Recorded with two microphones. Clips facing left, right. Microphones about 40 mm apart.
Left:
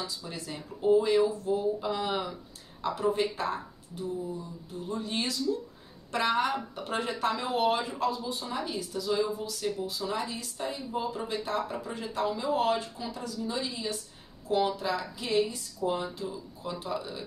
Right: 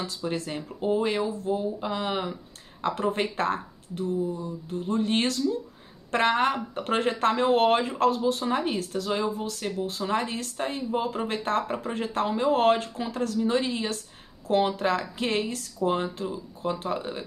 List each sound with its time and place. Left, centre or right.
0.0 s speech: right
2.8 s speech: right
15.8 s speech: right